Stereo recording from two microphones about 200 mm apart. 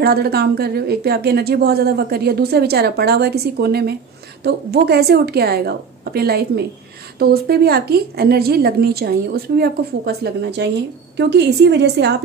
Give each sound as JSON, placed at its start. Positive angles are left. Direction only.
{"t": 0.0, "sound": "a woman's voice", "side_deg": -50}